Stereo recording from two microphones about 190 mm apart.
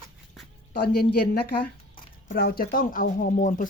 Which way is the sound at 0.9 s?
55° left (ahead or behind).